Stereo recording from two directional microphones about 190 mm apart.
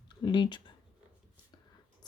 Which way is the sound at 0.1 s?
25° left (ahead or behind).